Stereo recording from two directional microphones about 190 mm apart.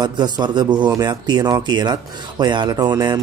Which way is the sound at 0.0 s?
25° right (ahead or behind).